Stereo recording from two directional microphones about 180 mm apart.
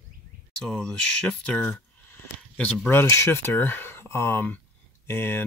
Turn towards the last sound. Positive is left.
turn(degrees=10)  # may be behind; listen again after turning